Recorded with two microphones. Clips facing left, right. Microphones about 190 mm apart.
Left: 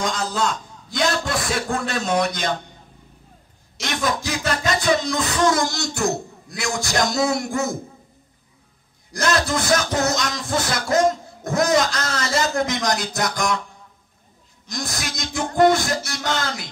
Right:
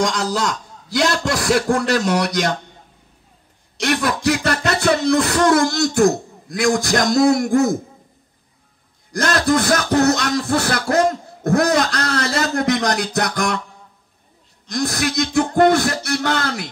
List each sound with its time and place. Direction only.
0.0 s a man's voice: 80° right
3.8 s music: 70° right (ahead or behind); by 7.7 s 55° right (ahead or behind)
9.1 s music: 55° right (ahead or behind)
14.8 s music: 60° right (ahead or behind)